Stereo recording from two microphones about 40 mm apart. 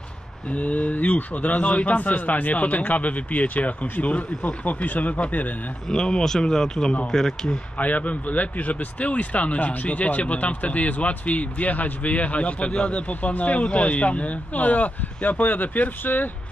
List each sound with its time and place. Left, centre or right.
0.5 s speech: left
5.9 s speech: centre
7.7 s speech: left
13.1 s speech: left